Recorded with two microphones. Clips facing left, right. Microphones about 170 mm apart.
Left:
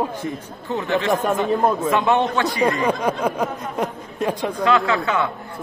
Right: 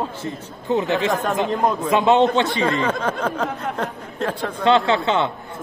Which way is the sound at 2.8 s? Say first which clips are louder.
Left 2 dB; 15° left (ahead or behind).